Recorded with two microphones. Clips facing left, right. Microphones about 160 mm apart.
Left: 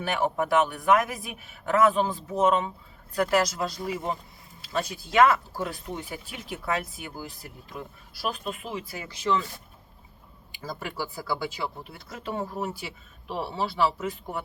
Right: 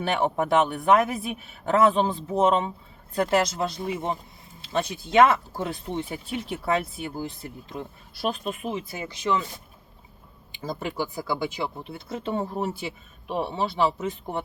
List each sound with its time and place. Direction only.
0.0 s speech: 30° right (ahead or behind)
10.5 s speech: 25° right (ahead or behind)